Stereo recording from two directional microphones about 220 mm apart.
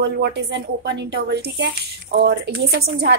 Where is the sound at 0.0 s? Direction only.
50° right (ahead or behind).